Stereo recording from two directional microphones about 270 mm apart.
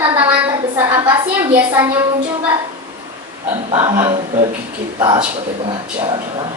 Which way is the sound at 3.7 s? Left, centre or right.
Centre.